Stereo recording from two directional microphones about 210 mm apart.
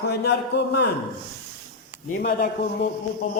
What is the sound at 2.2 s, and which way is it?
Speech, 50° left (ahead or behind).